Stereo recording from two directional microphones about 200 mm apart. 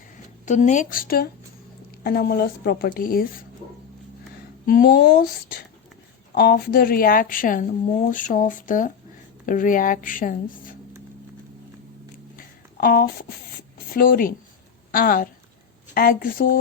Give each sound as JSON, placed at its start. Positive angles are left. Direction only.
{"t": 0.4, "sound": "a woman's voice", "side_deg": 35}
{"t": 4.6, "sound": "speech", "side_deg": 45}
{"t": 12.8, "sound": "speech", "side_deg": 50}